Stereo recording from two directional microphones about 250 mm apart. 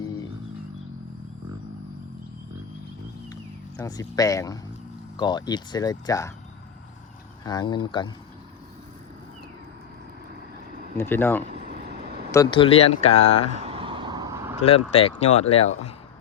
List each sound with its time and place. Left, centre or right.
3.8 s speech: centre
7.4 s speech: centre
10.9 s speech: centre
11.5 s vehicle: right
12.3 s speech: centre
13.6 s vehicle: right
14.6 s speech: left